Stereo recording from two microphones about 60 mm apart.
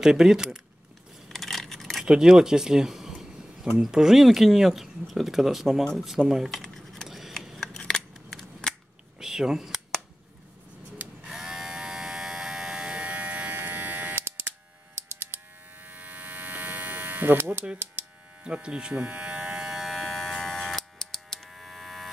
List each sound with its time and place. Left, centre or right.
0.0 s speech: centre
1.3 s keys jangling: centre
2.0 s speech: centre
6.6 s keys jangling: centre
7.1 s a sound: centre
9.2 s a sound: centre
11.2 s electric shaver: centre; by 14.3 s right
15.0 s mains hum: right
18.4 s speech: centre
19.7 s electric shaver: centre